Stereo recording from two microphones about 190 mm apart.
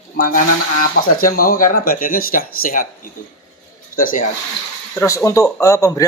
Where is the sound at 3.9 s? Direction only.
45° left (ahead or behind).